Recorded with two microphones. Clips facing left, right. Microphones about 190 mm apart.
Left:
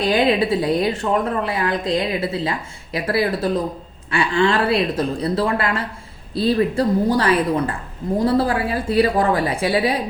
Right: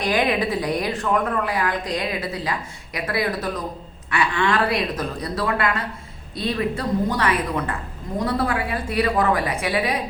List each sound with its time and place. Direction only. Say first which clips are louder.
0.0 s a woman's voice: left 4 dB; 25° left (ahead or behind)